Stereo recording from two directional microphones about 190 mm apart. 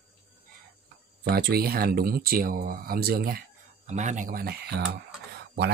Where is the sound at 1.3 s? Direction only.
50° right (ahead or behind).